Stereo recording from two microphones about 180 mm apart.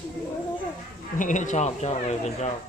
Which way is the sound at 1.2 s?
45° left (ahead or behind).